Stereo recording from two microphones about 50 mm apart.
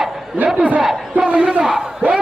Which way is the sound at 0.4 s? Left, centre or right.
Right.